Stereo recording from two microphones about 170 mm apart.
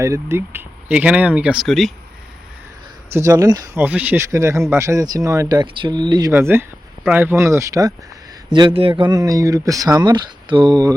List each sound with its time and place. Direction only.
0.0 s speech: 15° right (ahead or behind); by 1.9 s centre (ahead or behind)
3.1 s speech: 15° right (ahead or behind)
3.8 s speech: 10° right (ahead or behind)
8.5 s speech: 30° right (ahead or behind)